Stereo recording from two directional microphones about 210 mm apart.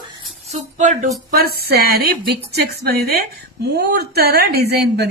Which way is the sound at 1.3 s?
45° right (ahead or behind).